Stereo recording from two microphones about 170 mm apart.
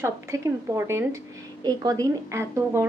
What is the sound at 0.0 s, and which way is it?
A woman's voice, 15° right (ahead or behind).